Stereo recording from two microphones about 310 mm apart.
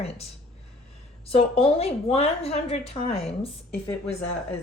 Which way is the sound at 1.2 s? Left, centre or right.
Centre.